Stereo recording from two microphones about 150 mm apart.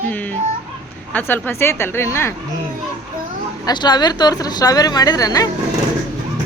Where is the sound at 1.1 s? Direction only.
15° left (ahead or behind).